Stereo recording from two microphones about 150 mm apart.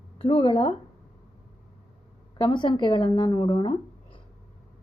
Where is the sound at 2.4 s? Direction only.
35° left (ahead or behind).